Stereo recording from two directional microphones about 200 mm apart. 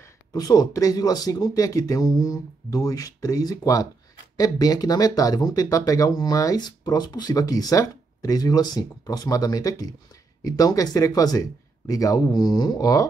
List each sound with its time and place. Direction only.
0.3 s speech: 20° left (ahead or behind)